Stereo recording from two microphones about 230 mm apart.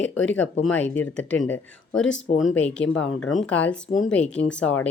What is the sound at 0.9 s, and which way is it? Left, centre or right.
Speech, centre.